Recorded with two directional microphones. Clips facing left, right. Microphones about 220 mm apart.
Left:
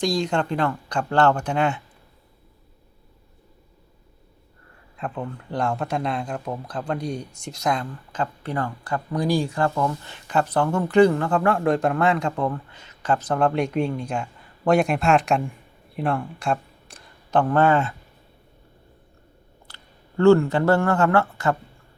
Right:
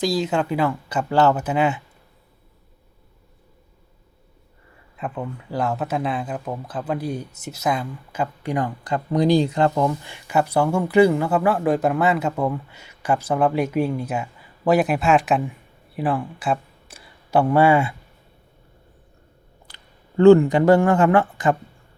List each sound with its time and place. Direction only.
0.0 s speech: 5° right (ahead or behind)
4.9 s speech: 5° right (ahead or behind)
19.6 s speech: 15° right (ahead or behind)